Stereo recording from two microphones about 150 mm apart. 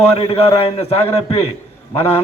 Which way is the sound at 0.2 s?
40° left (ahead or behind).